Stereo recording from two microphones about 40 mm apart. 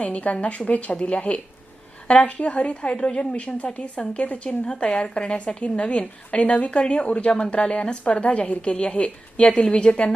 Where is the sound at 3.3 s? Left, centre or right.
Left.